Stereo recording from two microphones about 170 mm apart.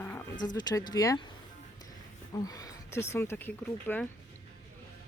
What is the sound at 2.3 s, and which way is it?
Speech, 20° left (ahead or behind).